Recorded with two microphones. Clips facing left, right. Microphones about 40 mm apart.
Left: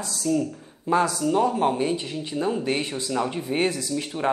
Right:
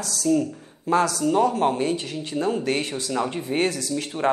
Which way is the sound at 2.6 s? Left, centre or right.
Centre.